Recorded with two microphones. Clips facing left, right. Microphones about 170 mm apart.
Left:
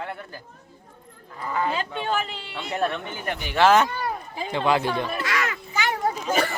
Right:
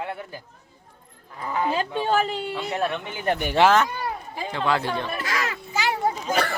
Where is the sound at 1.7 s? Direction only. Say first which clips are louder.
Right 4 dB; 40° right (ahead or behind).